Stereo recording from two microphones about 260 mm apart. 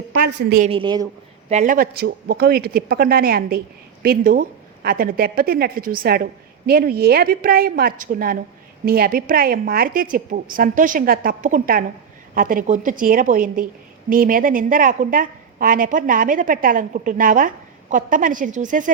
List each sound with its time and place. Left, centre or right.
0.2 s a woman's voice: right
0.7 s a woman's voice: centre
1.5 s a woman's voice: right